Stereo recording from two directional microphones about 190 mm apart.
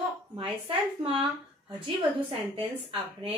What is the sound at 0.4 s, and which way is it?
Speech, 30° right (ahead or behind).